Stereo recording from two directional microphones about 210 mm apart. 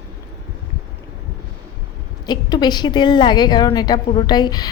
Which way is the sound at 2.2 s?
20° left (ahead or behind).